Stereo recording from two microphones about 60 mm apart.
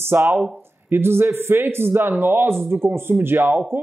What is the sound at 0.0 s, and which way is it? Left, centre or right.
Speech, right.